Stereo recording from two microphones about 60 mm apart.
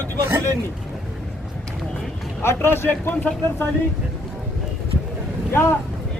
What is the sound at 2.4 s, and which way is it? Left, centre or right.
Speech, left.